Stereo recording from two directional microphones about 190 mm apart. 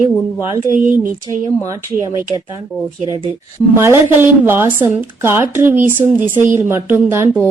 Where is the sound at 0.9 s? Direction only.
15° right (ahead or behind).